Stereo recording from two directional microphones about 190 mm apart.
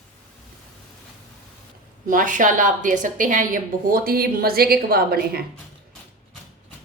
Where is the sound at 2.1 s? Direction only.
45° right (ahead or behind).